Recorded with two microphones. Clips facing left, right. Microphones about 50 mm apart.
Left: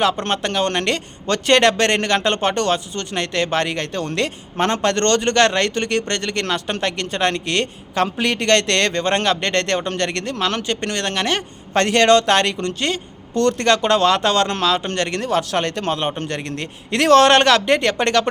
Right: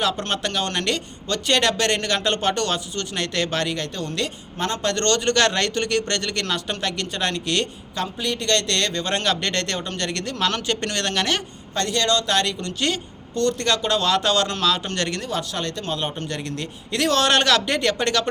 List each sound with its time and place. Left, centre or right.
0.0 s a man's voice: left
8.2 s a man's voice: left
10.3 s speech: left
11.7 s a man's voice: left
15.2 s speech: left
16.2 s a man's voice: left